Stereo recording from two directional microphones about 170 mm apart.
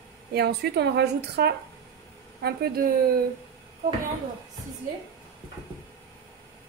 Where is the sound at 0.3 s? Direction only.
75° right (ahead or behind).